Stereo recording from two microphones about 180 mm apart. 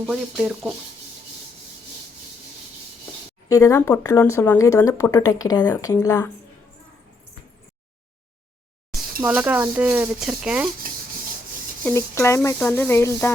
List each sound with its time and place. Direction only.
0.0 s speech: 5° right (ahead or behind)
3.5 s speech: 15° left (ahead or behind)
9.2 s speech: 10° right (ahead or behind)
11.8 s speech: 15° left (ahead or behind)